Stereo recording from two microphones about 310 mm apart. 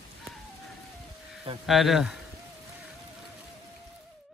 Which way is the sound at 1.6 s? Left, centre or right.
Centre.